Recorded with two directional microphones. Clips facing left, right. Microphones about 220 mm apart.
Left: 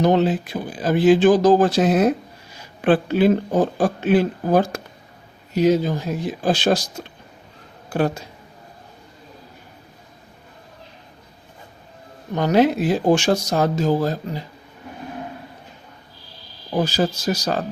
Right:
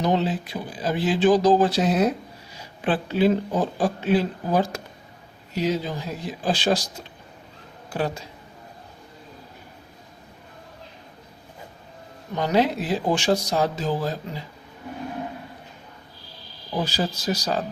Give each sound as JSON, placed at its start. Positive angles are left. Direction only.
{"t": 0.0, "sound": "speech", "side_deg": 55}
{"t": 12.3, "sound": "speech", "side_deg": 50}
{"t": 17.2, "sound": "speech", "side_deg": 45}